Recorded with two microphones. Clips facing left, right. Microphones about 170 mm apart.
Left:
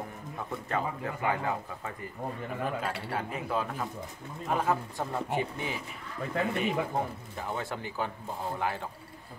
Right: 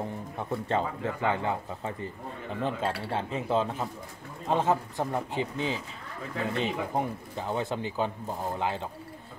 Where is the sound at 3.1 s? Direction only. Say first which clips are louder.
Right 4 dB; 25° right (ahead or behind).